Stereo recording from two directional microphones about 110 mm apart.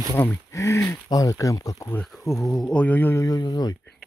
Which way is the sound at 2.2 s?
Centre (ahead or behind).